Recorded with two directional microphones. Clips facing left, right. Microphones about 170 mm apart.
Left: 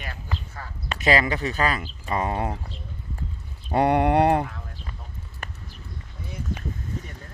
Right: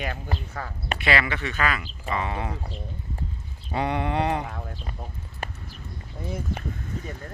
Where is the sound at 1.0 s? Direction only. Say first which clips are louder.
Left 4 dB; 35° left (ahead or behind).